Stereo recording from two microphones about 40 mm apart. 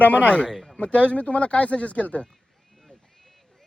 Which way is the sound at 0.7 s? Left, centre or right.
Left.